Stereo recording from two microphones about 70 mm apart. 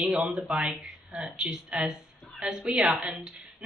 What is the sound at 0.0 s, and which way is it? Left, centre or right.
A woman's voice, centre.